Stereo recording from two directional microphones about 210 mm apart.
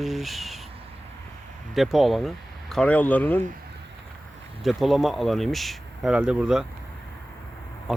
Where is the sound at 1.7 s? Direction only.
Centre (ahead or behind).